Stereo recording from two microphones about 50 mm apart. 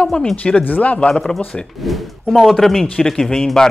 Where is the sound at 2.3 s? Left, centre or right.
Centre.